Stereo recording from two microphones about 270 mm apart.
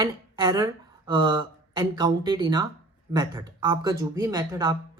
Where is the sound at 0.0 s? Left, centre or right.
Centre.